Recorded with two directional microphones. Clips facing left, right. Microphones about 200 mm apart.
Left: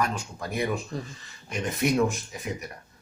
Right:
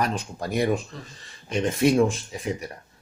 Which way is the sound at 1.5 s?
30° right (ahead or behind).